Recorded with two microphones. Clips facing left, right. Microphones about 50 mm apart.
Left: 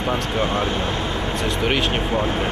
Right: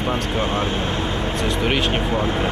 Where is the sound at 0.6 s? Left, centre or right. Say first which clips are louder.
Even; right.